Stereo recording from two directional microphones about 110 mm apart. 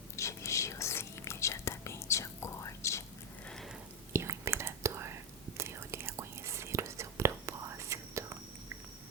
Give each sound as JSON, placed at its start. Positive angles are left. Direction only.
{"t": 0.2, "sound": "whispering", "side_deg": 25}
{"t": 4.1, "sound": "whispering", "side_deg": -25}